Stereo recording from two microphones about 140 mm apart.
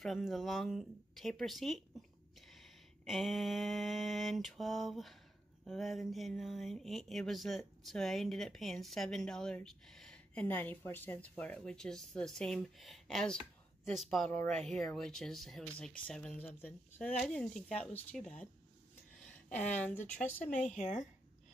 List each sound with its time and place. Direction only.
0.0 s speech: centre (ahead or behind)
20.4 s speech: 65° left (ahead or behind)